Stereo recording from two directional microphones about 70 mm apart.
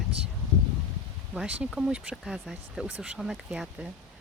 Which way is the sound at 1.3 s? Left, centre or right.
Centre.